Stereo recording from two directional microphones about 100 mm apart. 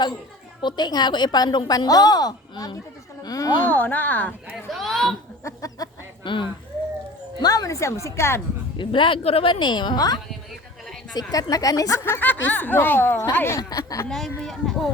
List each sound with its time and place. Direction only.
0.6 s a woman's voice: 45° left (ahead or behind)
3.6 s speech: 20° left (ahead or behind)
4.5 s a sound: centre (ahead or behind)
5.5 s a sound: 35° left (ahead or behind)
6.2 s speech: 55° left (ahead or behind)
7.4 s speech: 40° left (ahead or behind)
8.8 s a woman's voice: 60° left (ahead or behind); by 12.0 s 35° left (ahead or behind)
12.0 s speech: 20° left (ahead or behind)
13.6 s a woman's voice: 40° left (ahead or behind)
14.1 s speech: centre (ahead or behind)